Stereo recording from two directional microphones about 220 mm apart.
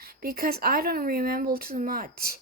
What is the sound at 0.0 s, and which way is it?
A woman's voice, 45° right (ahead or behind).